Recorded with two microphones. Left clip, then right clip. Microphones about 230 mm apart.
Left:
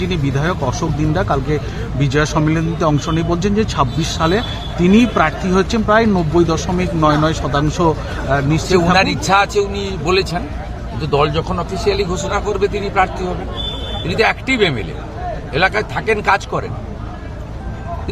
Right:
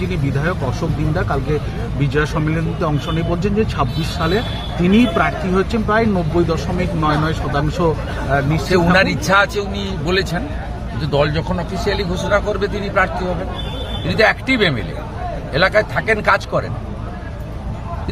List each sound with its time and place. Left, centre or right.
0.1 s speech: left
8.7 s a man's voice: centre
14.1 s speech: centre